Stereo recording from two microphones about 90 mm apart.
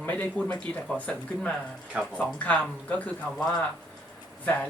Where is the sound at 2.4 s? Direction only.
15° left (ahead or behind).